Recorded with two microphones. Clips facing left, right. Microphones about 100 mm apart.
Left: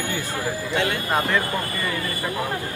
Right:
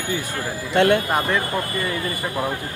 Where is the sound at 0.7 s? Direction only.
55° right (ahead or behind).